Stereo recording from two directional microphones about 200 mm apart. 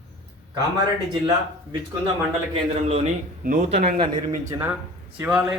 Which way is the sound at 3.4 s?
35° right (ahead or behind).